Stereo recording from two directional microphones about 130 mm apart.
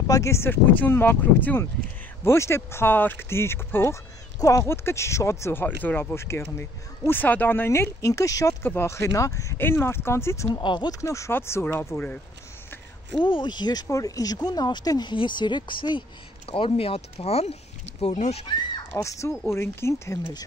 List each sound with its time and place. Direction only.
0.0 s speech: 25° left (ahead or behind)
10.6 s speech: 35° left (ahead or behind)
11.0 s speech: 25° left (ahead or behind)
13.2 s speech: 40° left (ahead or behind); by 18.4 s 55° left (ahead or behind)
18.9 s speech: 25° left (ahead or behind)